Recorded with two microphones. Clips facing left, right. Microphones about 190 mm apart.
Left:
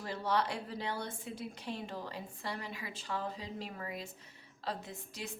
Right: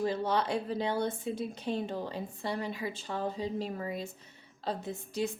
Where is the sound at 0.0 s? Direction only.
20° right (ahead or behind).